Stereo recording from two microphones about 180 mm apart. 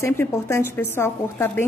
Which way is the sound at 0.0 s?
15° left (ahead or behind).